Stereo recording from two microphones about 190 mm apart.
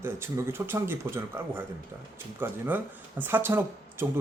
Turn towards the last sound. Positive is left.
turn(degrees=-10)  # may be behind; listen again after turning